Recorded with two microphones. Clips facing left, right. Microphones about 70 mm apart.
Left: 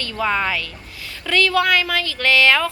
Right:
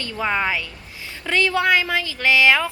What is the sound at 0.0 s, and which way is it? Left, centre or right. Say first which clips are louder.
A woman's voice: left 1 dB; centre.